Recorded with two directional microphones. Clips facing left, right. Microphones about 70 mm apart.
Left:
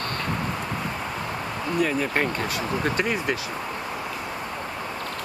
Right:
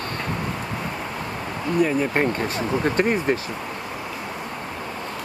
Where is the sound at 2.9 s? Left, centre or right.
Right.